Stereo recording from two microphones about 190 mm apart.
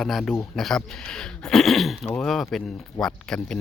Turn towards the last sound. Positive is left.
turn(degrees=5)  # may be behind; listen again after turning